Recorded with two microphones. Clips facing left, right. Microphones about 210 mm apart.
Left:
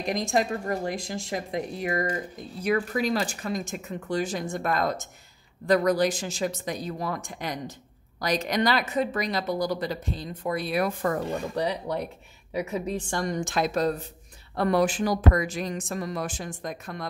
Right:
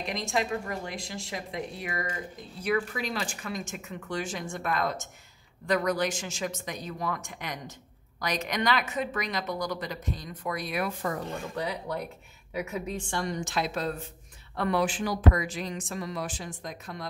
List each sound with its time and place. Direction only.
0.0 s a woman's voice: 45° left (ahead or behind)